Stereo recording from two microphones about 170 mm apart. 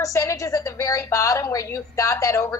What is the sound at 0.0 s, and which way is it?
A woman's voice, 20° left (ahead or behind).